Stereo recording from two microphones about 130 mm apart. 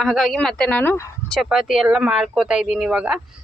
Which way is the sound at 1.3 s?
Centre (ahead or behind).